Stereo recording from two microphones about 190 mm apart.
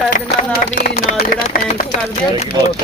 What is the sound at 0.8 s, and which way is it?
Speech, 45° left (ahead or behind).